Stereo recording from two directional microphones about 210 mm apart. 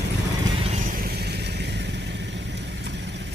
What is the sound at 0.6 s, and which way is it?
Vehicle, 30° right (ahead or behind).